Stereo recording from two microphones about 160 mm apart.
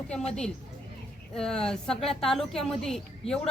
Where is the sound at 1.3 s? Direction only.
5° left (ahead or behind).